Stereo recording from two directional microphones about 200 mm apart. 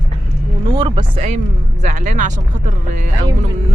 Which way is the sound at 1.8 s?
40° right (ahead or behind).